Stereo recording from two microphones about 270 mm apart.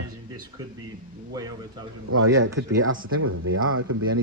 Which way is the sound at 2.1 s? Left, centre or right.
Right.